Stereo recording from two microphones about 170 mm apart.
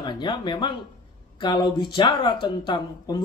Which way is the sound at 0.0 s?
25° left (ahead or behind).